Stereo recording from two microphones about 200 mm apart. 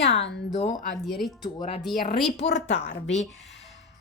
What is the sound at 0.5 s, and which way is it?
Speech, 35° left (ahead or behind).